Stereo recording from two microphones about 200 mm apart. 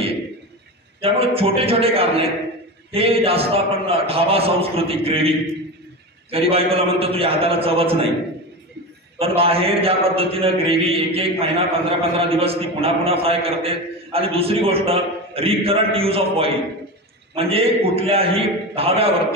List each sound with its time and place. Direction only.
1.0 s a man's voice: 30° right (ahead or behind)
6.3 s a man's voice: 30° right (ahead or behind)
9.2 s a man's voice: 30° right (ahead or behind)